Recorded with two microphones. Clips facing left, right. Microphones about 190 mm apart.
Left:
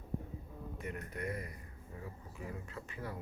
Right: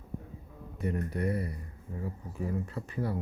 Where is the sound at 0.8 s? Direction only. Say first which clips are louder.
Right 11 dB; 35° right (ahead or behind).